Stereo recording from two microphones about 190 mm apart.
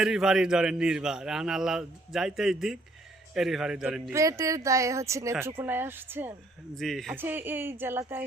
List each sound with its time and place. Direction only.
0.0 s a man's voice: 5° right (ahead or behind)
4.1 s speech: 15° right (ahead or behind)
6.7 s a man's voice: centre (ahead or behind)
7.2 s speech: 10° right (ahead or behind)